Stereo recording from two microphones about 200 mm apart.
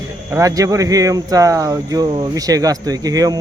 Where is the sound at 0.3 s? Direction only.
15° right (ahead or behind).